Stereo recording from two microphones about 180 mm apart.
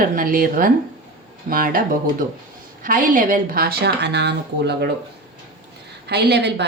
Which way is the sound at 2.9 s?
50° right (ahead or behind).